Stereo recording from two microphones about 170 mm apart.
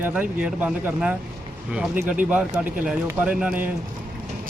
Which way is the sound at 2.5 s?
55° right (ahead or behind).